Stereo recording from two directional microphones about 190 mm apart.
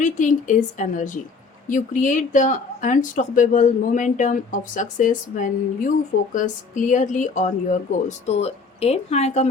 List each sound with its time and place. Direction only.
0.0 s speech: 40° left (ahead or behind)